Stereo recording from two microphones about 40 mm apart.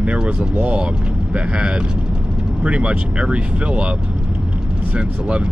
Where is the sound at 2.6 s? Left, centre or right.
Right.